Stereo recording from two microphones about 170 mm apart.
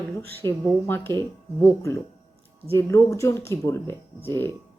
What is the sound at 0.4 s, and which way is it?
Speech, 15° left (ahead or behind).